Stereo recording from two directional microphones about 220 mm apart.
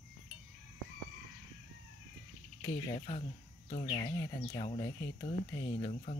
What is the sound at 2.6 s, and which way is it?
Speech, 25° left (ahead or behind).